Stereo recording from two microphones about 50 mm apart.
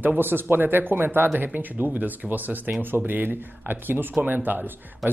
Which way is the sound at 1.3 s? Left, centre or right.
Right.